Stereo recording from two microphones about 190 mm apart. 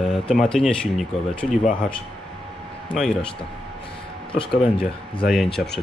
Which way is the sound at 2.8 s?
5° left (ahead or behind).